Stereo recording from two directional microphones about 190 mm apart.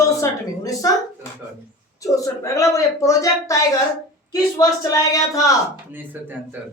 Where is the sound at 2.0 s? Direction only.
15° left (ahead or behind).